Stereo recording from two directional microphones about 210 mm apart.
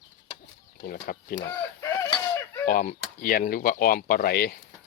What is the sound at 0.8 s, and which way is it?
Speech, 45° left (ahead or behind).